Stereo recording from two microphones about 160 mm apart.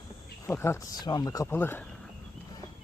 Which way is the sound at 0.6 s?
20° left (ahead or behind).